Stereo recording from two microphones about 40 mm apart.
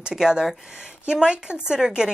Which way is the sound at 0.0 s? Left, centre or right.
Centre.